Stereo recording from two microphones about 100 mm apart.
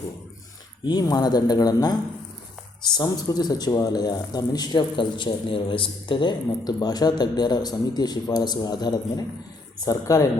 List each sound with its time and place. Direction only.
0.9 s speech: 40° left (ahead or behind)